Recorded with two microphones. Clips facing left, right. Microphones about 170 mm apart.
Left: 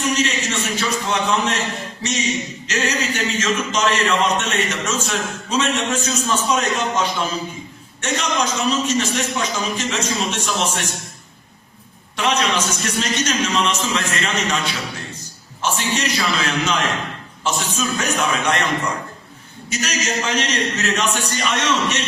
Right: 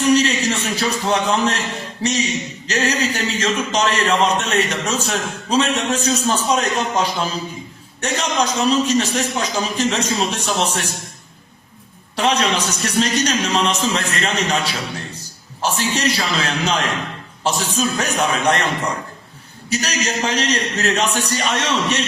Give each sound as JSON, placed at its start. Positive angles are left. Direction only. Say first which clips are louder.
{"t": 0.0, "sound": "a sound", "louder": "right 5 dB", "side_deg": -35}
{"t": 2.0, "sound": "a man's voice", "louder": "right 3 dB", "side_deg": -35}
{"t": 12.1, "sound": "a man's voice", "louder": "right 2 dB", "side_deg": -35}